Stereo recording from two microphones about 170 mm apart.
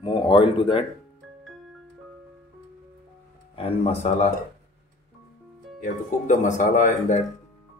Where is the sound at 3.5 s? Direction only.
35° left (ahead or behind).